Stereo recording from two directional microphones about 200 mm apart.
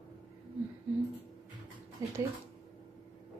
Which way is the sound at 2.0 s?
15° right (ahead or behind).